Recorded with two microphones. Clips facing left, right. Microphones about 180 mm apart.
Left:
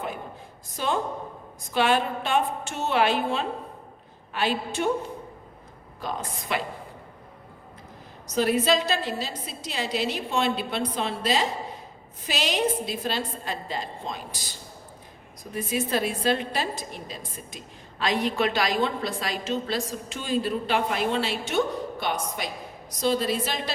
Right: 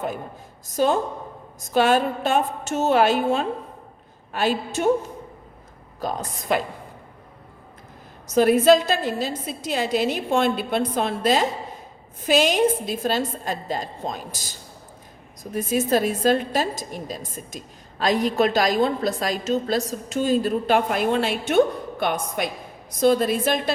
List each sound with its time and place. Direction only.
0.8 s a woman's voice: 40° right (ahead or behind)
6.0 s a woman's voice: 40° right (ahead or behind)
8.4 s a woman's voice: 50° right (ahead or behind)
15.5 s a woman's voice: 45° right (ahead or behind)